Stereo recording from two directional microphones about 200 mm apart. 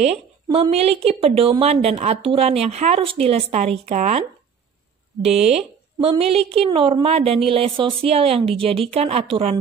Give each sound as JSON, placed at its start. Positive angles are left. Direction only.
{"t": 0.0, "sound": "a woman's voice", "side_deg": -30}